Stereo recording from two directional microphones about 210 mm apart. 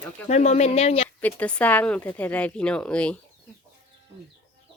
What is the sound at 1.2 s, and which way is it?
A woman's voice, 5° left (ahead or behind).